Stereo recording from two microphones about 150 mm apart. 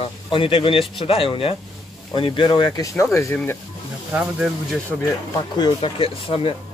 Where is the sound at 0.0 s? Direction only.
35° left (ahead or behind); by 3.3 s 20° left (ahead or behind).